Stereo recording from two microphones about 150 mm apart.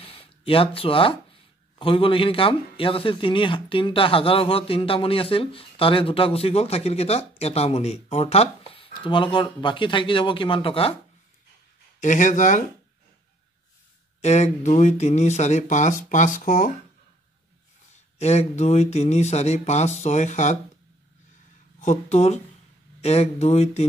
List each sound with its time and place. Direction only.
0.0 s a sound: 40° left (ahead or behind)
1.8 s speech: 35° left (ahead or behind)
12.0 s speech: 55° left (ahead or behind)
14.2 s speech: 50° left (ahead or behind)
18.2 s speech: 45° left (ahead or behind)
21.7 s speech: 50° left (ahead or behind)